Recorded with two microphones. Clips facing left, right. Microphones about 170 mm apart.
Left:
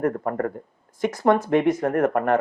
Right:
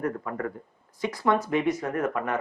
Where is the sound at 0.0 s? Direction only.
50° left (ahead or behind).